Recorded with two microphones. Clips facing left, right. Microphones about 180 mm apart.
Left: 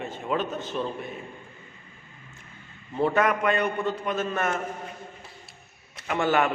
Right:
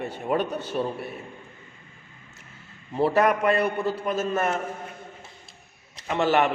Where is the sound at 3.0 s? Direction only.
35° right (ahead or behind).